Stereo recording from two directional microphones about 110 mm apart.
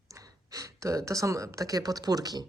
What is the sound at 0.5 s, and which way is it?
Speech, 30° right (ahead or behind).